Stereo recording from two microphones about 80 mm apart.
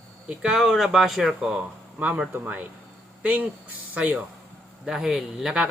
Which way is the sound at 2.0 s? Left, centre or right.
Centre.